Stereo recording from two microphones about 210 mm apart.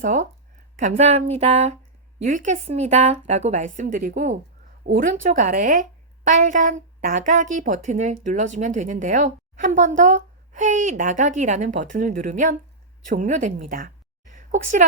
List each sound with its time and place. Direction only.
0.0 s a woman's voice: 35° right (ahead or behind)